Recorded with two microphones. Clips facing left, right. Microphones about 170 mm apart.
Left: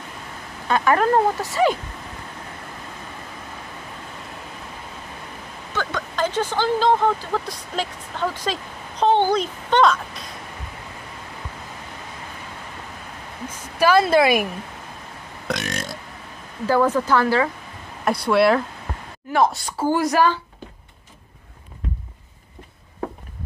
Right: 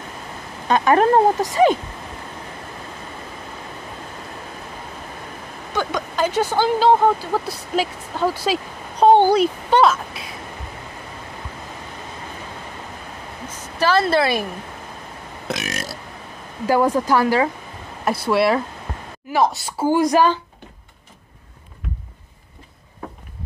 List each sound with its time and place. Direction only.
0.7 s speech: 20° right (ahead or behind)
5.7 s speech: 15° right (ahead or behind)
13.5 s a woman's voice: 10° left (ahead or behind)
15.4 s burping: centre (ahead or behind)
16.6 s speech: 15° right (ahead or behind)
18.0 s speech: centre (ahead or behind)
19.9 s speech: 15° right (ahead or behind)